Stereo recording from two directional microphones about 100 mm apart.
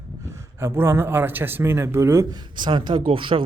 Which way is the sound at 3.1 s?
60° right (ahead or behind).